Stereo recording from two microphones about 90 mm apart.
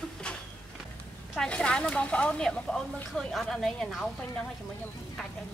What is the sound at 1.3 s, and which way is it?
Speech, 10° left (ahead or behind).